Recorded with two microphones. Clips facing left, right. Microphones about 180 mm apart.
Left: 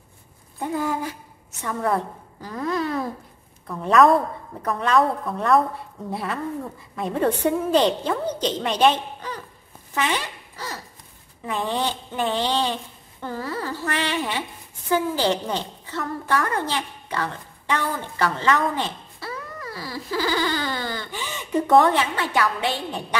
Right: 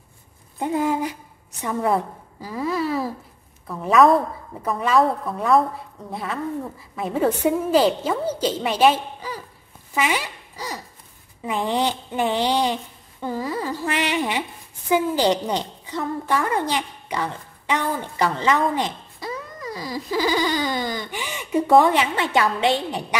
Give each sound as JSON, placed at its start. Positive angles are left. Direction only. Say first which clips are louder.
{"t": 0.6, "sound": "a woman's voice", "louder": "right 3 dB", "side_deg": -20}
{"t": 9.9, "sound": "dog", "louder": "right 2 dB", "side_deg": -10}
{"t": 11.4, "sound": "a woman's voice", "louder": "right 3 dB", "side_deg": -15}